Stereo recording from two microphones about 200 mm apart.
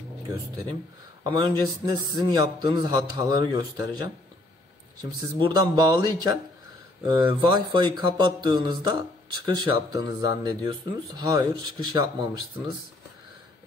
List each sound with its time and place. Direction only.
1.2 s a man's voice: 20° right (ahead or behind)
5.4 s a man's voice: 20° right (ahead or behind)